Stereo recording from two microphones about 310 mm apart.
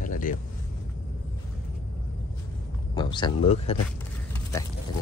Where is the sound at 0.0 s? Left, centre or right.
Left.